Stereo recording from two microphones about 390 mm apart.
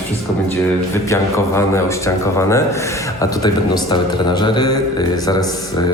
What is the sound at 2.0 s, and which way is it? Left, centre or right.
Speech, centre.